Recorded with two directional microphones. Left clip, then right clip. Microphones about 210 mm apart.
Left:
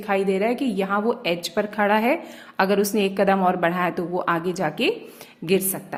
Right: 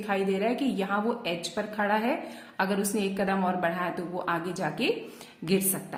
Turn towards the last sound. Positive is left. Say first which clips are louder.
# left 6 dB
turn(degrees=30)  # may be behind; listen again after turning